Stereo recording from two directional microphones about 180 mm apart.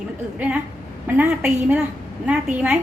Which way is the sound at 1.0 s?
10° right (ahead or behind).